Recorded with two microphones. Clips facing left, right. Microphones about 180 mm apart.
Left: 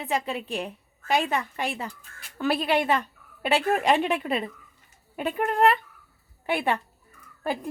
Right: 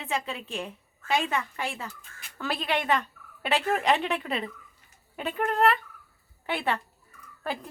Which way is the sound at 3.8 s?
10° left (ahead or behind).